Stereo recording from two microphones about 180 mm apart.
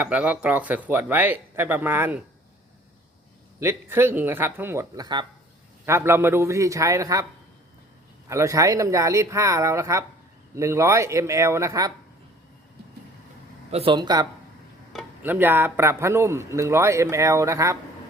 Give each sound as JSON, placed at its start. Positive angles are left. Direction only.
{"t": 0.0, "sound": "a man's voice", "side_deg": -5}
{"t": 3.6, "sound": "a man's voice", "side_deg": -15}
{"t": 8.3, "sound": "a man's voice", "side_deg": -15}
{"t": 13.7, "sound": "speech", "side_deg": -30}
{"t": 15.2, "sound": "a man's voice", "side_deg": -10}